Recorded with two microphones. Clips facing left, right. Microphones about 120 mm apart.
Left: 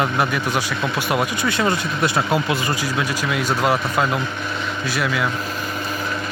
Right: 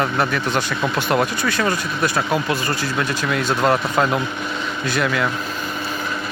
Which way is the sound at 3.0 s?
5° left (ahead or behind).